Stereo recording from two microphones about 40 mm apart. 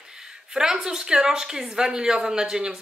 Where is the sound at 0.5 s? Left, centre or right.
Centre.